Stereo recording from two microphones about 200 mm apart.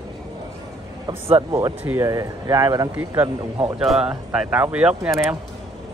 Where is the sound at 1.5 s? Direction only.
10° right (ahead or behind).